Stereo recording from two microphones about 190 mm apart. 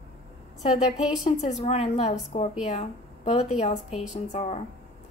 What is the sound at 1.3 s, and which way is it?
A woman's voice, 35° left (ahead or behind).